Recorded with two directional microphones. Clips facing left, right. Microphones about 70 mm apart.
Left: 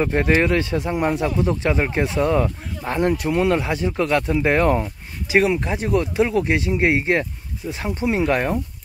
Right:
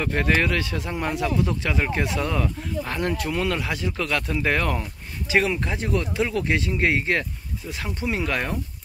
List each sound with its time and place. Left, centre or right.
0.0 s speech: left